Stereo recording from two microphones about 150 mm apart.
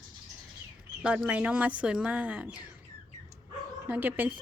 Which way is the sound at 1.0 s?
10° right (ahead or behind).